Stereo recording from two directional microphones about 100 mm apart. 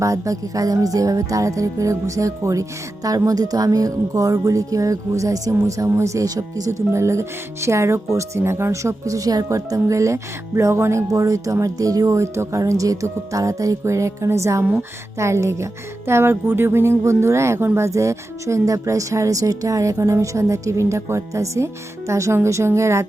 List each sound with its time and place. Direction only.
0.0 s speech: 30° right (ahead or behind)
14.6 s speech: 20° right (ahead or behind)